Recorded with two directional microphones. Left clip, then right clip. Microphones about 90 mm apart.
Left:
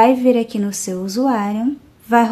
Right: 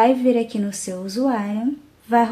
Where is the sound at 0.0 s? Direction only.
45° left (ahead or behind).